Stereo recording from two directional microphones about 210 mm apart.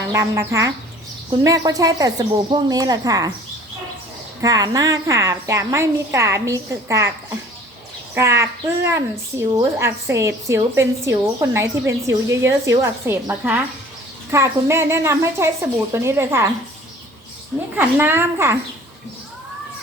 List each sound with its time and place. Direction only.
0.1 s a woman's voice: 15° right (ahead or behind)
4.4 s a woman's voice: 15° right (ahead or behind)
17.7 s a woman's voice: 10° right (ahead or behind)